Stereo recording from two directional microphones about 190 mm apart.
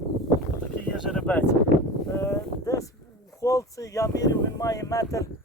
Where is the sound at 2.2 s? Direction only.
15° left (ahead or behind).